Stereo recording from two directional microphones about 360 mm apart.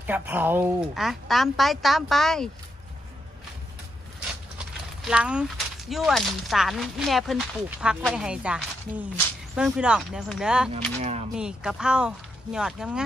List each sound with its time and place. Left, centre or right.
0.3 s speech: centre
5.0 s speech: centre
10.7 s speech: centre
11.3 s speech: centre